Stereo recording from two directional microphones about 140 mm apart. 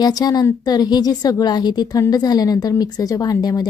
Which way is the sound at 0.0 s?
25° left (ahead or behind).